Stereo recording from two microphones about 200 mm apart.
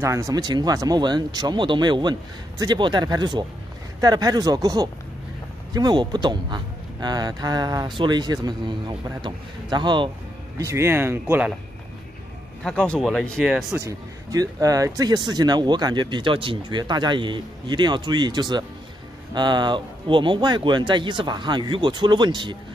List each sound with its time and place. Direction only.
0.0 s speech: 15° right (ahead or behind)
10.6 s speech: 15° right (ahead or behind)
12.6 s speech: 5° left (ahead or behind)
13.7 s speech: 15° right (ahead or behind)